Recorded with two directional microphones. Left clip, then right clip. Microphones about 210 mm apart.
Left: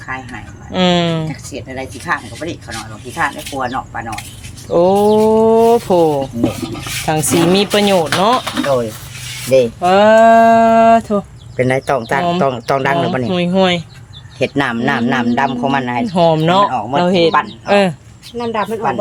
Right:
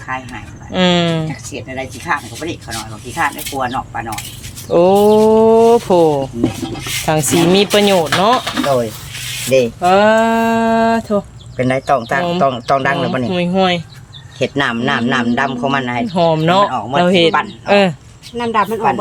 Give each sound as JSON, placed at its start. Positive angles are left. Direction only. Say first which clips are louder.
{"t": 0.7, "sound": "speech", "louder": "even", "side_deg": -5}
{"t": 1.3, "sound": "speech", "louder": "right 1 dB", "side_deg": 10}
{"t": 4.7, "sound": "speech", "louder": "right 1 dB", "side_deg": -15}
{"t": 11.5, "sound": "speech", "louder": "even", "side_deg": 15}
{"t": 17.0, "sound": "speech", "louder": "right 1 dB", "side_deg": -10}
{"t": 18.3, "sound": "speech", "louder": "right 3 dB", "side_deg": -60}